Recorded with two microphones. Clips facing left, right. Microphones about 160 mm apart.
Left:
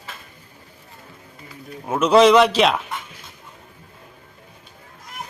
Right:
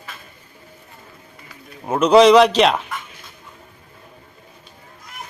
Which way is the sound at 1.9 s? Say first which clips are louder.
Right 2 dB; centre (ahead or behind).